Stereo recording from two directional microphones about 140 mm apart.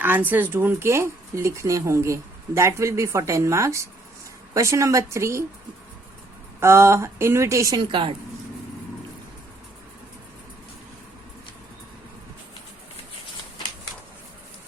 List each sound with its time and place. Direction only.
0.0 s speech: 15° right (ahead or behind)
6.6 s speech: 20° right (ahead or behind)
7.8 s a woman's voice: 35° right (ahead or behind)